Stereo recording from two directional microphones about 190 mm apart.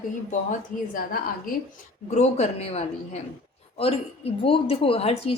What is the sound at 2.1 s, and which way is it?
A woman's voice, 35° left (ahead or behind).